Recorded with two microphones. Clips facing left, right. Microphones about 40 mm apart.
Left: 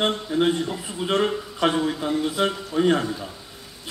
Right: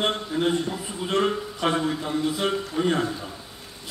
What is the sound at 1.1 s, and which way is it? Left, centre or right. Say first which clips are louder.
Speech: left 1 dB; left.